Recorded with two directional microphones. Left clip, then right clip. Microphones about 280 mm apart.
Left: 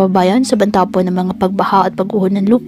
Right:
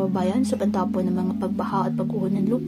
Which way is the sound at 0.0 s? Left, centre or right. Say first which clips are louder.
Left 12 dB; left.